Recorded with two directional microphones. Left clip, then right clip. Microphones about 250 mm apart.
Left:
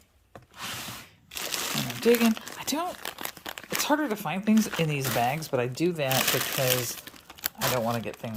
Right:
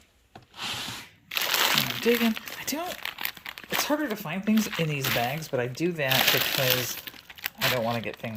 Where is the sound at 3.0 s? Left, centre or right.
Left.